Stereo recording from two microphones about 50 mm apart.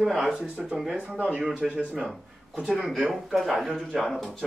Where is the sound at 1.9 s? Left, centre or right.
Centre.